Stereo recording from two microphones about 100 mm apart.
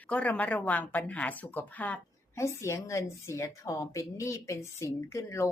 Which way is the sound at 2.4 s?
30° left (ahead or behind).